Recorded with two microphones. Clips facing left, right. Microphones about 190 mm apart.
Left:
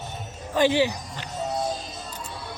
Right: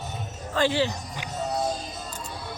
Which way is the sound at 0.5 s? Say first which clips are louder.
Left 3 dB; 15° left (ahead or behind).